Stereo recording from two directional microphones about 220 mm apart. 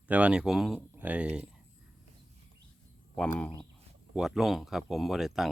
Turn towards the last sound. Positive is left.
turn(degrees=0)  # may be behind; listen again after turning